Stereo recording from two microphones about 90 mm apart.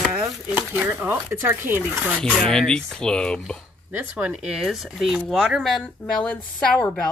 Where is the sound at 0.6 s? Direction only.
25° right (ahead or behind).